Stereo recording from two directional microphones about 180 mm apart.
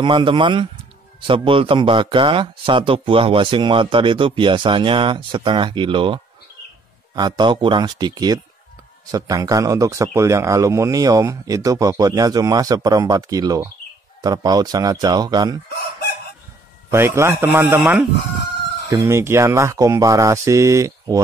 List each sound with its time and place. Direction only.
0.0 s speech: 30° right (ahead or behind)
16.9 s speech: 15° right (ahead or behind)